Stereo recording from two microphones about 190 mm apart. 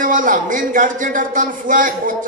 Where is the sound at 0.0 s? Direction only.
45° right (ahead or behind).